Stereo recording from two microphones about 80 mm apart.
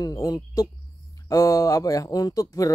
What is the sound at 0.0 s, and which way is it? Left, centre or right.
Speech, left.